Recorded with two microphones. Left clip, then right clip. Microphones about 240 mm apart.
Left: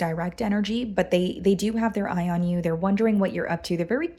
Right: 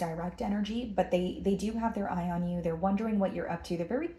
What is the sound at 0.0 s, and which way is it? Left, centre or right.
Speech, left.